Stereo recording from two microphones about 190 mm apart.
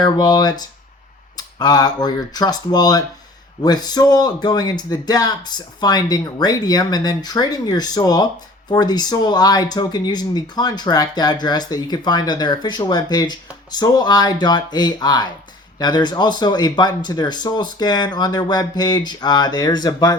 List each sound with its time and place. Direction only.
0.0 s speech: 20° left (ahead or behind)